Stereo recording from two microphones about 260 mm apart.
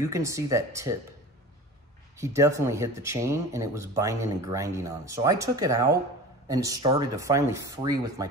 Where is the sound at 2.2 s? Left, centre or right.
Centre.